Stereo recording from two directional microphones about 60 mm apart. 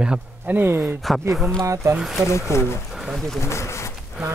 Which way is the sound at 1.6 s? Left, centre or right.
Right.